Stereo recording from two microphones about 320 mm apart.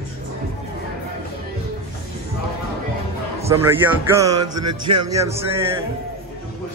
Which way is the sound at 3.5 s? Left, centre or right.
Centre.